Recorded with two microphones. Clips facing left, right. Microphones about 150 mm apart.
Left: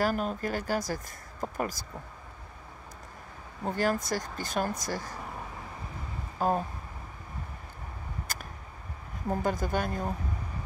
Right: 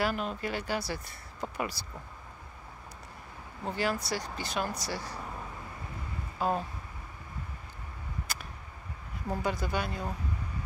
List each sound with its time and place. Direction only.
0.0 s speech: 40° left (ahead or behind)
3.6 s speech: 45° left (ahead or behind)
6.3 s speech: 45° left (ahead or behind)
8.3 s a sound: 45° left (ahead or behind)
9.3 s speech: 45° left (ahead or behind)